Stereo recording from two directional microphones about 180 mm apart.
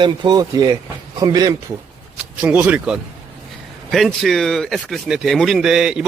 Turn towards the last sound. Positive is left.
turn(degrees=-5)  # may be behind; listen again after turning